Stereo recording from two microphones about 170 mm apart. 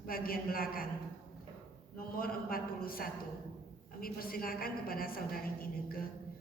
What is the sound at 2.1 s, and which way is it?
A woman's voice, 60° left (ahead or behind).